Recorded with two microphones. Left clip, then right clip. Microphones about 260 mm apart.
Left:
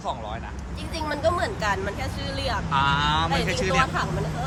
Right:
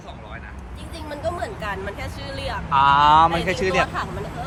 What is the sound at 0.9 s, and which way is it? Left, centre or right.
Speech, centre.